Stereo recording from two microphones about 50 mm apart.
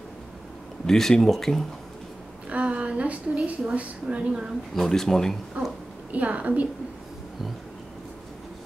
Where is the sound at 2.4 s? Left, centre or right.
Right.